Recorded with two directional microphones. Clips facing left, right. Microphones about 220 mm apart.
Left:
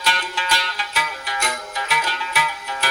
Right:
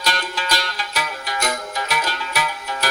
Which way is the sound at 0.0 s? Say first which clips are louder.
Right 1 dB; 40° right (ahead or behind).